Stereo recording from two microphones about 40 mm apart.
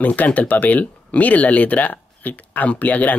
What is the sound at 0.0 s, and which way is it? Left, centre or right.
Speech, left.